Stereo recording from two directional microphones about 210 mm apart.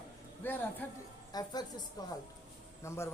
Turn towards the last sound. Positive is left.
turn(degrees=15)  # may be behind; listen again after turning